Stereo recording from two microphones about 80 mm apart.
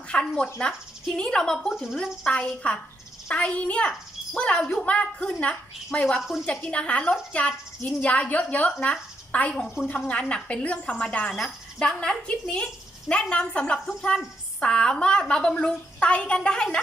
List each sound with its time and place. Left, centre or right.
0.1 s a woman's voice: centre
2.2 s a woman's voice: centre
4.8 s a woman's voice: centre